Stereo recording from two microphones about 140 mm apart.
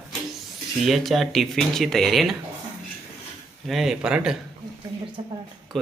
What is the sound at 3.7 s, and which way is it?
Speech, centre (ahead or behind).